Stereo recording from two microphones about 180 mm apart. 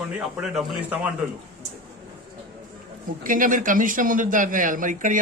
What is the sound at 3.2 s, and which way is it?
A man's voice, 50° right (ahead or behind).